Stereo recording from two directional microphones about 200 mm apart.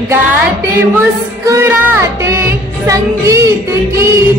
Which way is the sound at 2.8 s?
15° right (ahead or behind).